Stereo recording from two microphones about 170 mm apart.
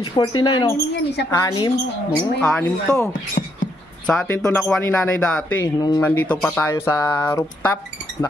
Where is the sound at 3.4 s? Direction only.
50° left (ahead or behind).